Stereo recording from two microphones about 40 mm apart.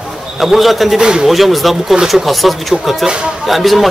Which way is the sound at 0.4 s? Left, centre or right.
Centre.